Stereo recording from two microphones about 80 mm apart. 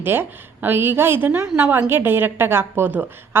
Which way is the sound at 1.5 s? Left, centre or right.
Centre.